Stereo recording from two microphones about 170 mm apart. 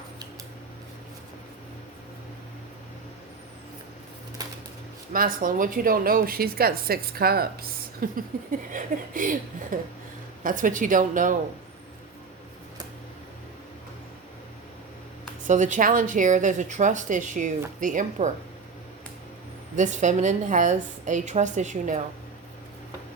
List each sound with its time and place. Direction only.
4.4 s a sound: 20° right (ahead or behind)
5.1 s a woman's voice: 55° right (ahead or behind)
15.4 s a woman's voice: 45° right (ahead or behind)
19.7 s a woman's voice: 45° right (ahead or behind)